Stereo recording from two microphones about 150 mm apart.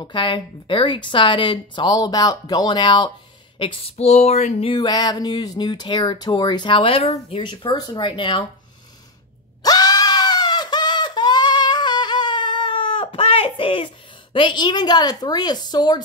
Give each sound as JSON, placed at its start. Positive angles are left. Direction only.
{"t": 0.0, "sound": "speech", "side_deg": 35}
{"t": 3.9, "sound": "speech", "side_deg": 45}
{"t": 4.7, "sound": "speech", "side_deg": 25}
{"t": 9.6, "sound": "screaming", "side_deg": 25}